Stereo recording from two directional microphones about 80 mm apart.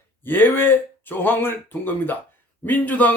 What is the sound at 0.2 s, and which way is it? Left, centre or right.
Speech, left.